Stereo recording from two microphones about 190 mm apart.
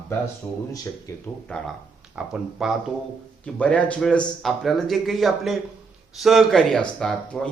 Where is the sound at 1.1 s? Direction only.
15° left (ahead or behind).